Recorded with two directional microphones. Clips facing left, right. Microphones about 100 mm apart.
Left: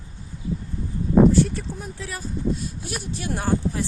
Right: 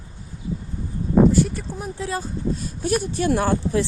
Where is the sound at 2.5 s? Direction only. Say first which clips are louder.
Right 9 dB; 45° right (ahead or behind).